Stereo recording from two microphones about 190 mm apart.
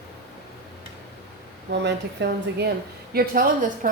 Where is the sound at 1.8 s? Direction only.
65° right (ahead or behind).